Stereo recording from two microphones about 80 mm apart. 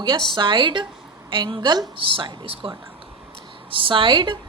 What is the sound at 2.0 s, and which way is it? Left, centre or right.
Speech, right.